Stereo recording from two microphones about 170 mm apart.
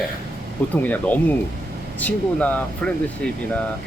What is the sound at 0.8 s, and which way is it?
Speech, 10° left (ahead or behind).